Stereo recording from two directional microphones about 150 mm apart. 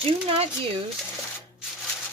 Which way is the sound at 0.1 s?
35° right (ahead or behind).